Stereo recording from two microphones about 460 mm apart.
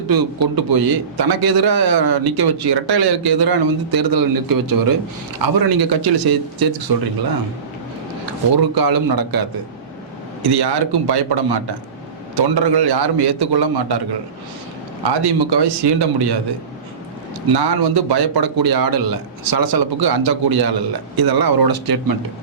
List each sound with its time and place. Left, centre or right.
0.1 s a man's voice: right
8.5 s a man's voice: right
10.4 s a man's voice: right
15.2 s speech: right
17.5 s a man's voice: right